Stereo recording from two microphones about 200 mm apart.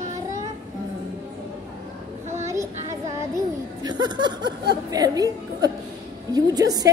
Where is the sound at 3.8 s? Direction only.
20° right (ahead or behind).